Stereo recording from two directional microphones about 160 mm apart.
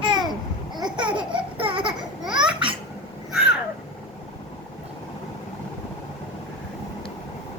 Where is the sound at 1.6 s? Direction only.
35° right (ahead or behind).